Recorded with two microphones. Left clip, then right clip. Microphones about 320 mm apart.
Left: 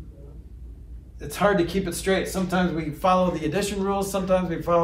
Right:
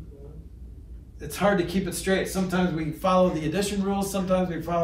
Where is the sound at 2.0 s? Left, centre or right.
Centre.